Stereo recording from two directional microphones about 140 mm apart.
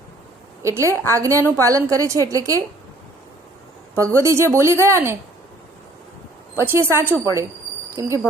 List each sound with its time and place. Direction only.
0.6 s a woman's voice: 20° right (ahead or behind)
1.4 s a woman's voice: 15° left (ahead or behind)
1.6 s a woman's voice: 25° right (ahead or behind)
3.9 s a woman's voice: 20° right (ahead or behind)
6.6 s a woman's voice: 15° right (ahead or behind)